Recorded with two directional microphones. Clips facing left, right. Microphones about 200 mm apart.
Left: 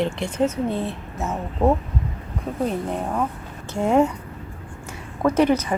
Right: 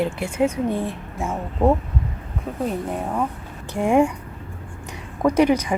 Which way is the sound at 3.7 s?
15° right (ahead or behind).